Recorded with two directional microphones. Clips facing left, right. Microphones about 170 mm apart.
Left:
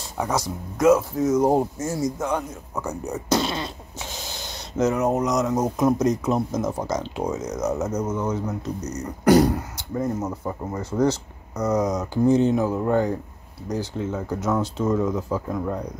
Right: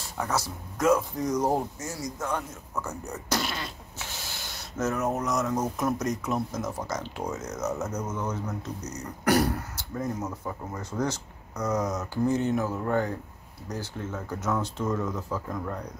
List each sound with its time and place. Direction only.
0.2 s speech: 15° left (ahead or behind)
1.5 s speech: 25° left (ahead or behind)